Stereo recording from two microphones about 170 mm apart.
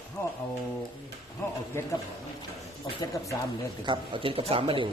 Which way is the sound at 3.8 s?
30° right (ahead or behind).